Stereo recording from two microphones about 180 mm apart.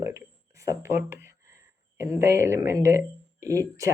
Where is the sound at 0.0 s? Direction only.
15° right (ahead or behind).